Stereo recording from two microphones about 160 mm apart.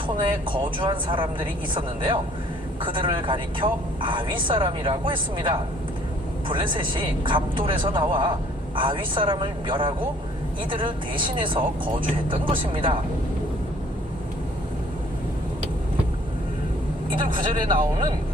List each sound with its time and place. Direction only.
0.2 s a woman's voice: 30° right (ahead or behind)
2.8 s a woman's voice: 30° right (ahead or behind)
17.3 s a woman's voice: 30° right (ahead or behind)